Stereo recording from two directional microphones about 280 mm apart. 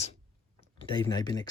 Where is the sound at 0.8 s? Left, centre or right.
Centre.